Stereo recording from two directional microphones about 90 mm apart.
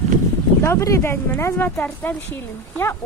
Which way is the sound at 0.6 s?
35° left (ahead or behind).